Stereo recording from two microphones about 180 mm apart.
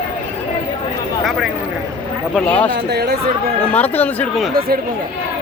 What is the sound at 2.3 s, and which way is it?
Speech, 10° left (ahead or behind).